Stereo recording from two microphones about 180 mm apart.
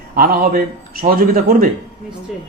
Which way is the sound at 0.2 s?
55° right (ahead or behind).